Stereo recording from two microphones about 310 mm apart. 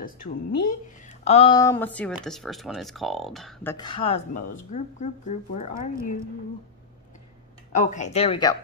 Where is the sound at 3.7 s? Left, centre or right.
Centre.